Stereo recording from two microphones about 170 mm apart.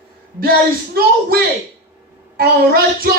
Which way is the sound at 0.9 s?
60° right (ahead or behind).